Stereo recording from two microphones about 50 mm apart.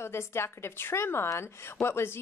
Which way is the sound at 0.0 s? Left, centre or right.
Left.